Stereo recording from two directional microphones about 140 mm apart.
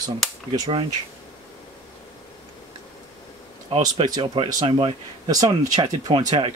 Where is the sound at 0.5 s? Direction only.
40° right (ahead or behind).